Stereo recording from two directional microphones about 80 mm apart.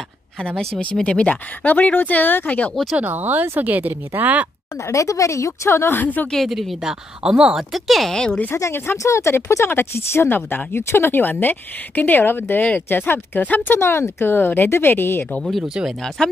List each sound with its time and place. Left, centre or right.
0.9 s speech: centre
2.7 s speech: centre
3.0 s speech: right
4.8 s a woman's voice: left
6.3 s speech: centre
8.5 s speech: left
16.2 s speech: centre